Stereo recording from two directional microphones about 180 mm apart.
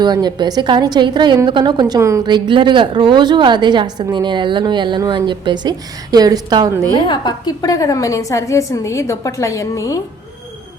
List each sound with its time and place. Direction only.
0.0 s a woman's voice: 25° right (ahead or behind)
6.9 s a woman's voice: 25° left (ahead or behind)